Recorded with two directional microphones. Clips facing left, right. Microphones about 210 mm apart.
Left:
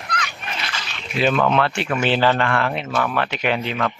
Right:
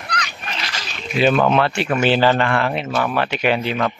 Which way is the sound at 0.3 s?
40° right (ahead or behind).